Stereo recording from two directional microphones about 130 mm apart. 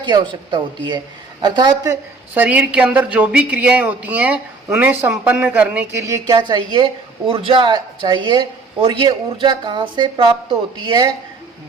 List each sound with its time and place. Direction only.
0.0 s a woman's voice: 35° right (ahead or behind)
2.3 s a man's voice: 10° right (ahead or behind); by 11.1 s 35° right (ahead or behind)